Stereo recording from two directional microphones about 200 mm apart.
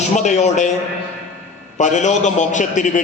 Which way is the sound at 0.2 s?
35° left (ahead or behind).